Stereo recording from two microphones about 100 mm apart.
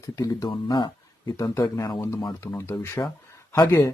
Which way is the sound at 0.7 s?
50° left (ahead or behind).